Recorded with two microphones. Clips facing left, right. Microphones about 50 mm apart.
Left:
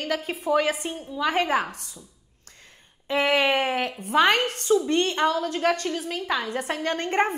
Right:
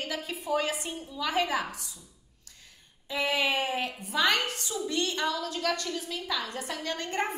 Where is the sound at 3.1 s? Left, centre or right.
Left.